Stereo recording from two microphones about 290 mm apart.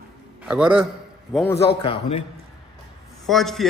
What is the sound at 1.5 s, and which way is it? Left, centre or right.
Speech, centre.